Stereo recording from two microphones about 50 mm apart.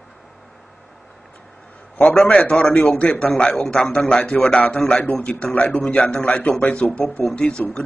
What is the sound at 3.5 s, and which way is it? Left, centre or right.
Speech, centre.